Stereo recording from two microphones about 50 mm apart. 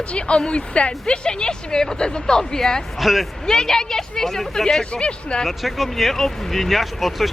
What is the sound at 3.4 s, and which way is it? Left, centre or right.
Speech, centre.